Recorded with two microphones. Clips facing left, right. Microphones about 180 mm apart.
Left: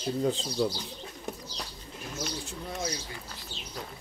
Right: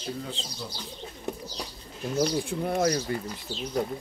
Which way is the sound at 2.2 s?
55° right (ahead or behind).